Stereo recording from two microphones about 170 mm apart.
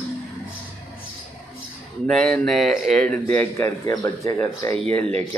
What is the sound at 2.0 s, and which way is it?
Speech, centre (ahead or behind).